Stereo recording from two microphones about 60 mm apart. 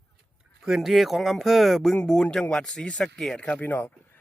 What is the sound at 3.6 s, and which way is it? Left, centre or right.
Speech, left.